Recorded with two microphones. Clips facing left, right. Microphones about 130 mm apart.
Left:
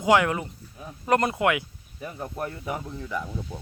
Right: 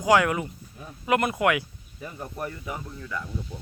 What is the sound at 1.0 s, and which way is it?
Speech, 35° left (ahead or behind).